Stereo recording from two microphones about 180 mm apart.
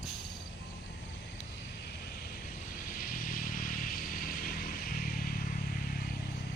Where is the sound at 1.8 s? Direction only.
60° left (ahead or behind).